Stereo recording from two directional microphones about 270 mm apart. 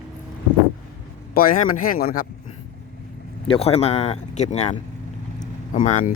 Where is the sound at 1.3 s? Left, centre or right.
Left.